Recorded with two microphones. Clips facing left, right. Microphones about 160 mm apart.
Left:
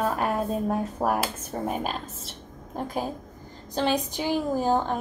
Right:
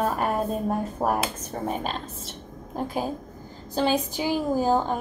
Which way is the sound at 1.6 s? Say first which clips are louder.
Right 1 dB; 5° left (ahead or behind).